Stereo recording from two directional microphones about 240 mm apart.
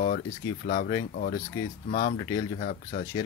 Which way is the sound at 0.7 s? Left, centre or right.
Left.